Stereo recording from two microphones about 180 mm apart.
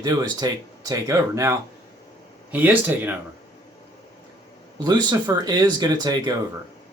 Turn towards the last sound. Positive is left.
turn(degrees=-25)  # may be behind; listen again after turning